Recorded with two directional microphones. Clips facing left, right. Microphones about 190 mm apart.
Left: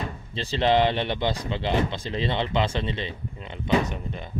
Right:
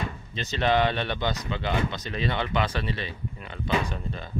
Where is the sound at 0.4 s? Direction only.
30° left (ahead or behind).